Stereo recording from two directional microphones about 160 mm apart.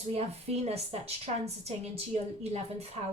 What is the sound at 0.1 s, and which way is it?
A woman's voice, 40° right (ahead or behind).